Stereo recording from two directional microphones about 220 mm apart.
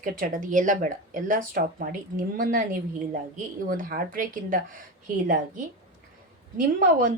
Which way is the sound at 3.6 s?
40° right (ahead or behind).